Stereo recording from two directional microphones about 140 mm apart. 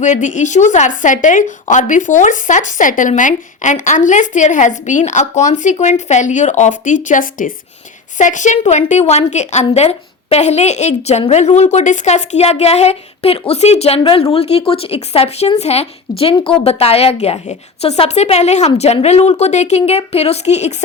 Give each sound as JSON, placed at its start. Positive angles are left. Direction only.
{"t": 0.0, "sound": "a woman's voice", "side_deg": 65}